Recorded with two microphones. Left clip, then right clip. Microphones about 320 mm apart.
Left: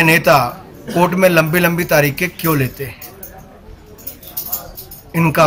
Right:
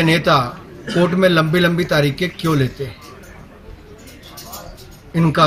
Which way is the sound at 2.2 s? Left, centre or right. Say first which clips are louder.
Left 2 dB; centre.